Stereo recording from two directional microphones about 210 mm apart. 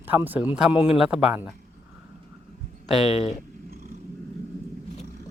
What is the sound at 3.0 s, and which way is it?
Speech, 30° left (ahead or behind).